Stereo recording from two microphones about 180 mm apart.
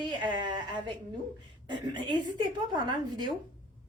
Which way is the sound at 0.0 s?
25° right (ahead or behind).